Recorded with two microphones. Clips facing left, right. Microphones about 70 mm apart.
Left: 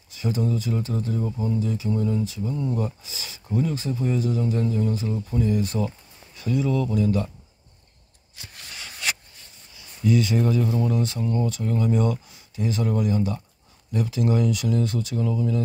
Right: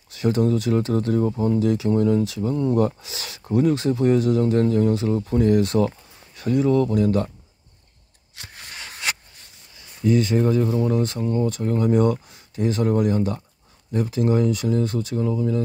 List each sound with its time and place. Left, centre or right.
0.1 s speech: right
6.4 s speech: right
10.0 s speech: right